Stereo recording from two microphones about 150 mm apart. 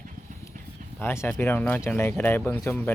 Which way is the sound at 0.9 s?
15° left (ahead or behind).